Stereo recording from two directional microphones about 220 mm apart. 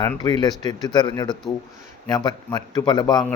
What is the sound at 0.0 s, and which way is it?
A man's voice, 15° left (ahead or behind).